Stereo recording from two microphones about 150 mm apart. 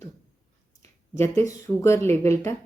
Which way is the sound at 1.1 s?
15° left (ahead or behind).